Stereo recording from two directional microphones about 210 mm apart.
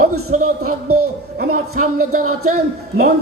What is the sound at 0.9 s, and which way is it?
Speech, 90° right.